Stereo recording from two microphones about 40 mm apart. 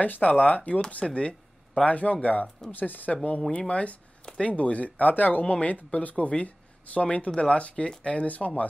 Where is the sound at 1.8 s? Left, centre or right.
Left.